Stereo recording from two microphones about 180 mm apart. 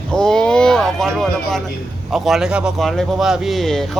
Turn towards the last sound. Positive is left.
turn(degrees=0)  # may be behind; listen again after turning